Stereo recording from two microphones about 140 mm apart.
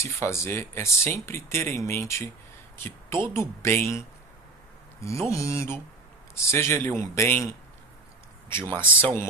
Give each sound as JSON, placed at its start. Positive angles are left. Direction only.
{"t": 0.0, "sound": "speech", "side_deg": 20}
{"t": 2.7, "sound": "a sound", "side_deg": 15}
{"t": 3.3, "sound": "speech", "side_deg": 20}
{"t": 8.7, "sound": "speech", "side_deg": 15}